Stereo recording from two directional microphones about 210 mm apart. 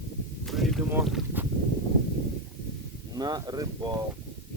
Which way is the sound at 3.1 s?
20° right (ahead or behind).